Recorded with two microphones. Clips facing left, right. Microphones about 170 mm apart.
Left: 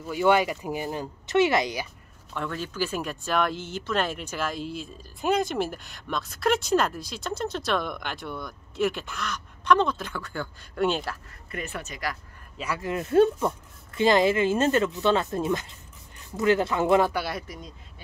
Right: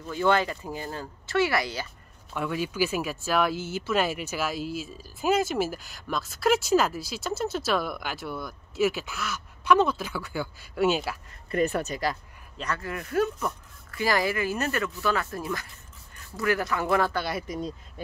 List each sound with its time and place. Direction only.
0.0 s speech: 10° left (ahead or behind)
2.3 s speech: 10° right (ahead or behind)
11.5 s speech: 40° right (ahead or behind)
12.5 s speech: 10° left (ahead or behind)
12.8 s speech: 25° left (ahead or behind)
17.2 s speech: centre (ahead or behind)
17.5 s speech: 30° right (ahead or behind)